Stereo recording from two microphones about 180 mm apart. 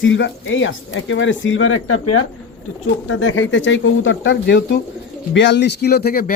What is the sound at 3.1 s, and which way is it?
Speech, 85° left.